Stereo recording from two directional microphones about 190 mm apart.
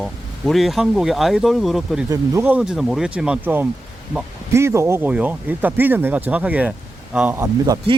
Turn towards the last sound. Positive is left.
turn(degrees=-20)  # may be behind; listen again after turning